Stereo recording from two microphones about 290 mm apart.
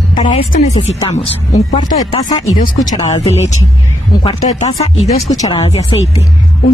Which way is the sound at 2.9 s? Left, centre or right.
Centre.